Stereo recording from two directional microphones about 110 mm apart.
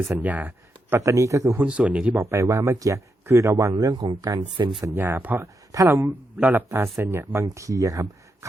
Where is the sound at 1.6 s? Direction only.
10° right (ahead or behind).